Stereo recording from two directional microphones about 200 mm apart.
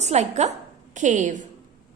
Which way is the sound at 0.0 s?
35° right (ahead or behind).